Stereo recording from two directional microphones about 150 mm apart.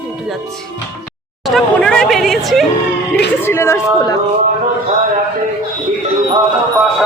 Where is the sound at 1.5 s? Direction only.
Centre (ahead or behind).